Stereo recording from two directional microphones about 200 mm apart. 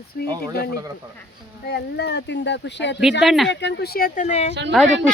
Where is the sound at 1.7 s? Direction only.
55° left (ahead or behind).